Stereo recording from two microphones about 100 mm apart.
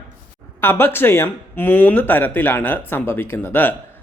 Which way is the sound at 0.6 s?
20° left (ahead or behind).